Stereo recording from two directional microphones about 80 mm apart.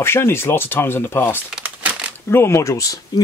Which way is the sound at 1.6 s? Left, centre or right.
Centre.